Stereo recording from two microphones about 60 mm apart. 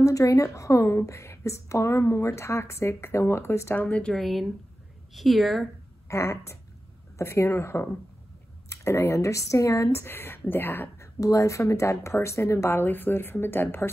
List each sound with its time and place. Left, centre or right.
0.0 s a woman's voice: left
3.7 s speech: left
4.1 s a woman's voice: centre
6.0 s a woman's voice: left
9.8 s speech: left
11.0 s a woman's voice: left